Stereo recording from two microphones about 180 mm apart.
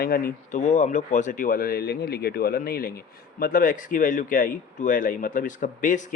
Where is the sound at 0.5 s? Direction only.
45° left (ahead or behind).